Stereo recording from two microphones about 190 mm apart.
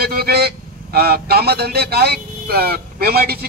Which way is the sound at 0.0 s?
55° right (ahead or behind).